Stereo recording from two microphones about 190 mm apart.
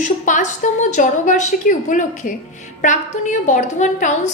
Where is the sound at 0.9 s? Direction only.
40° left (ahead or behind).